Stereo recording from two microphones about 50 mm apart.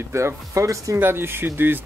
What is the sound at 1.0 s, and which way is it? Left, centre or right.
Speech, right.